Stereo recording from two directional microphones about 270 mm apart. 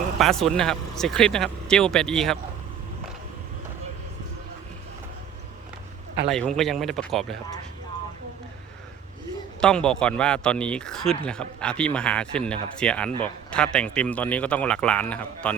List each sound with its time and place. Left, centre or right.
0.2 s speech: centre
6.2 s speech: centre
9.6 s speech: centre
13.1 s speech: centre
13.5 s speech: centre